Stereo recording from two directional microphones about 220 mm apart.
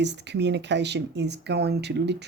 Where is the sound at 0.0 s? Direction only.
50° right (ahead or behind).